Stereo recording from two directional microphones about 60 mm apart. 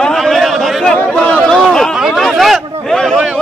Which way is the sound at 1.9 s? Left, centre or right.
Centre.